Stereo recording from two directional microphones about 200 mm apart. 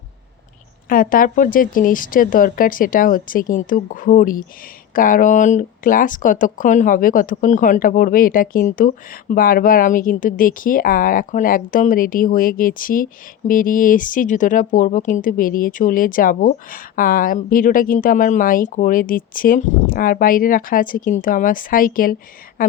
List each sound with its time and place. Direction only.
0.9 s speech: 45° left (ahead or behind)